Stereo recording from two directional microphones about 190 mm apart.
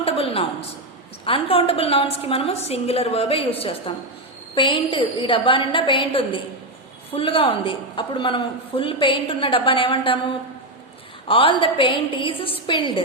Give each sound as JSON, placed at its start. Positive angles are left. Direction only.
{"t": 0.0, "sound": "a sound", "side_deg": 30}
{"t": 1.2, "sound": "a woman's voice", "side_deg": 30}
{"t": 11.3, "sound": "a woman's voice", "side_deg": 30}